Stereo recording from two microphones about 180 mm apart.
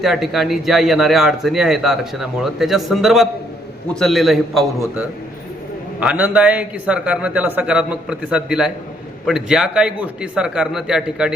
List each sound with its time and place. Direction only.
0.0 s a man's voice: centre (ahead or behind)